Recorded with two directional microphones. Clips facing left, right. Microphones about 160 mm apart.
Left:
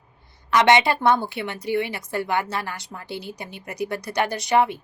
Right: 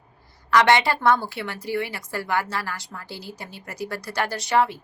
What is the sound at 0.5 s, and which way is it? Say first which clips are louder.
A woman's voice: left 1 dB; 20° left (ahead or behind).